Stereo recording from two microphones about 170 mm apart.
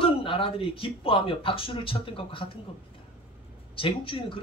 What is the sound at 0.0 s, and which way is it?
A man's voice, 30° left (ahead or behind).